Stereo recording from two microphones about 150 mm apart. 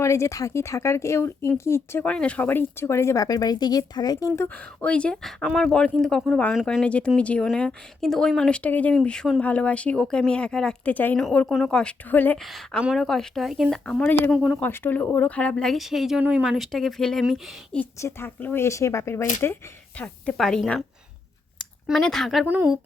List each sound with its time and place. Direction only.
0.0 s speech: 20° left (ahead or behind)
4.4 s speech: 10° left (ahead or behind)
12.4 s speech: centre (ahead or behind)
14.3 s speech: centre (ahead or behind)
14.6 s speech: 10° left (ahead or behind)
17.7 s speech: 10° left (ahead or behind)
20.0 s speech: 5° left (ahead or behind)